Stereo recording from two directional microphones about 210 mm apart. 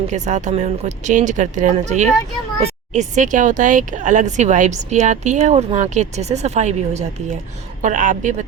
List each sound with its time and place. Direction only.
0.1 s speech: 35° right (ahead or behind)